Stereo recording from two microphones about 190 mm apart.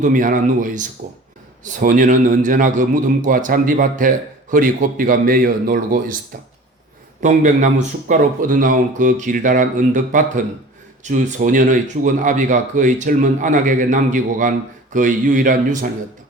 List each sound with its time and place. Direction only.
0.0 s speech: 45° right (ahead or behind)
7.2 s speech: 40° right (ahead or behind)